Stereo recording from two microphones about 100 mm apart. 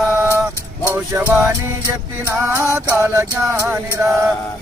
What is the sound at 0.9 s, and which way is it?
Music, 20° right (ahead or behind).